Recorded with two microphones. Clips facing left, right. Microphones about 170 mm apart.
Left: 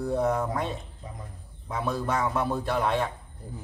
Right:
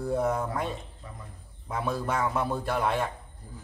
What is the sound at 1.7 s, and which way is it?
Speech, 5° right (ahead or behind).